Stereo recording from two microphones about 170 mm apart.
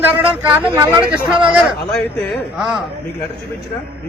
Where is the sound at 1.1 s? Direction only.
5° right (ahead or behind).